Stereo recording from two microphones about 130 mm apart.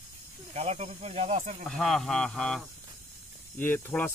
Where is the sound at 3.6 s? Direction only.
15° left (ahead or behind).